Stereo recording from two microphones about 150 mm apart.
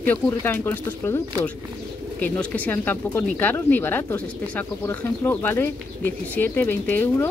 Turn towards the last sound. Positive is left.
turn(degrees=15)  # may be behind; listen again after turning